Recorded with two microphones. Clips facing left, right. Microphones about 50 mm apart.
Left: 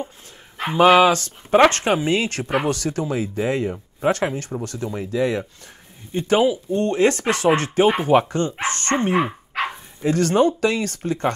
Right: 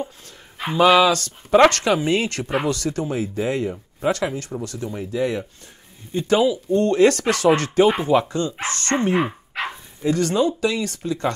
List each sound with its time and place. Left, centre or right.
0.6 s speech: left
2.0 s speech: left
2.3 s speech: left
2.9 s speech: left
6.1 s speech: left
11.1 s speech: left